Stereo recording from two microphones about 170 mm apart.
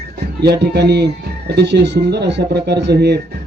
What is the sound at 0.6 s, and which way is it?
Speech, 75° right (ahead or behind).